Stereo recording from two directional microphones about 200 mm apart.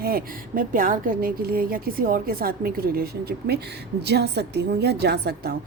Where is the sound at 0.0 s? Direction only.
45° right (ahead or behind).